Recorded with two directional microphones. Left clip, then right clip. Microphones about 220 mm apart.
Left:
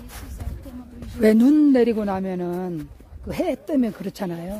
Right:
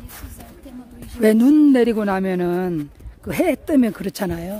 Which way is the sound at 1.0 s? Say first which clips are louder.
Right 1 dB; 10° right (ahead or behind).